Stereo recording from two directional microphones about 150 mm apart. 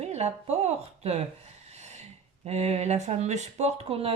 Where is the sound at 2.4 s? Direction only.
45° right (ahead or behind).